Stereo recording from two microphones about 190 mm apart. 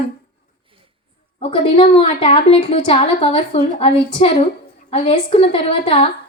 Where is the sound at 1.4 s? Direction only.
30° left (ahead or behind).